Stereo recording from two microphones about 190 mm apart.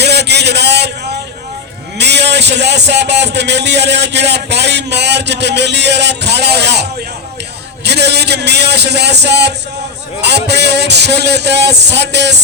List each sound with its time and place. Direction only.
0.0 s a sound: 60° right (ahead or behind)
2.0 s a man's voice: 65° right (ahead or behind)
7.9 s a man's voice: 60° right (ahead or behind)